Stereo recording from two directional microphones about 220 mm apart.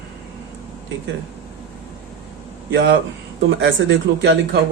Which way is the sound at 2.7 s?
55° right (ahead or behind).